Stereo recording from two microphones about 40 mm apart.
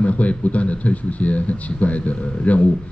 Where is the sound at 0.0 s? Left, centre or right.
Left.